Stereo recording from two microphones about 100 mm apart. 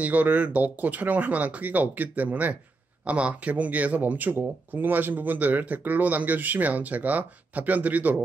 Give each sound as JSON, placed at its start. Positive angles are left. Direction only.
{"t": 0.0, "sound": "speech", "side_deg": -15}